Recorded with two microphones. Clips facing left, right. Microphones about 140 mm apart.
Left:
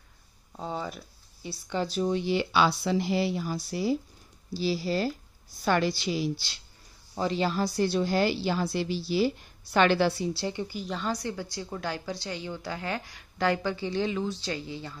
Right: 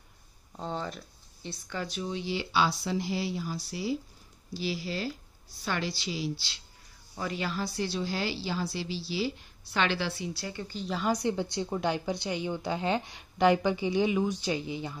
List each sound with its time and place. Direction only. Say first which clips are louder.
0.6 s speech: left 1 dB; 5° left (ahead or behind)
1.9 s speech: left 7 dB; 45° left (ahead or behind)
4.6 s a woman's voice: left 6 dB; 35° left (ahead or behind)
7.2 s a woman's voice: left 6 dB; 30° left (ahead or behind)
10.4 s speech: left 6 dB; 20° left (ahead or behind)
10.7 s a woman's voice: even; 5° left (ahead or behind)
11.1 s a woman's voice: right 7 dB; 20° right (ahead or behind)